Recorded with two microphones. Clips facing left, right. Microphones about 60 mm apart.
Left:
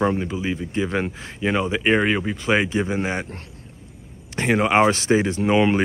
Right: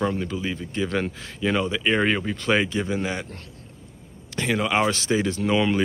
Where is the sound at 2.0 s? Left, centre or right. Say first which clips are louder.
Left 1 dB; centre; by 3.2 s left.